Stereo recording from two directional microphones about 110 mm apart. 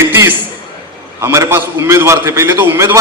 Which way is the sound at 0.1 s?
20° right (ahead or behind).